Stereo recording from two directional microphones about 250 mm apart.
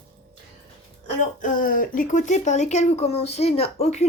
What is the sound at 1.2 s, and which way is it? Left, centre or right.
Speech, left.